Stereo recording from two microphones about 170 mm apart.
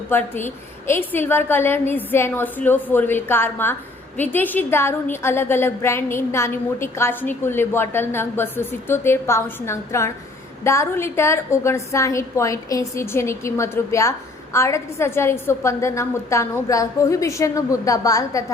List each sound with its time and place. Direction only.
0.1 s a woman's voice: 10° left (ahead or behind)